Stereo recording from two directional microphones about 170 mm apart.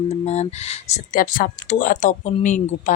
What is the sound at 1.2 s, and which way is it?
Speech, 55° left (ahead or behind).